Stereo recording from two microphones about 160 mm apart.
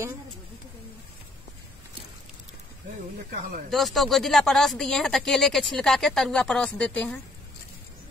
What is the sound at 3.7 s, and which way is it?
Speech, centre (ahead or behind).